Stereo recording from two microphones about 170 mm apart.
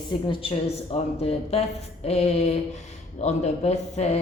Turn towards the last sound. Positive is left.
turn(degrees=40)  # may be behind; listen again after turning